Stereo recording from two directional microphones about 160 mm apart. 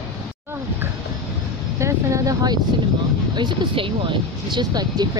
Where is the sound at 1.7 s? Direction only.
20° right (ahead or behind).